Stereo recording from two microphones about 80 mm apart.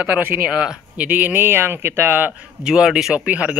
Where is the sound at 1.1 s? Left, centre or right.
Right.